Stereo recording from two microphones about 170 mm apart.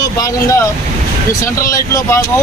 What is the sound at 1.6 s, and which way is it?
Speech, 15° left (ahead or behind).